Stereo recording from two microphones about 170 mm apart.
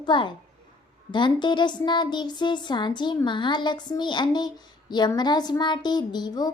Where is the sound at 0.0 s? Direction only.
30° left (ahead or behind).